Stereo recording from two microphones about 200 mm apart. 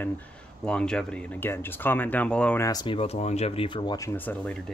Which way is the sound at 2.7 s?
20° left (ahead or behind).